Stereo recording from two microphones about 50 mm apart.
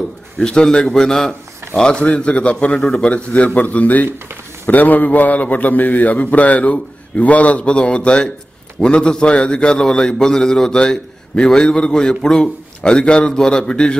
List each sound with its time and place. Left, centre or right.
0.4 s a man's voice: centre
2.0 s a man's voice: left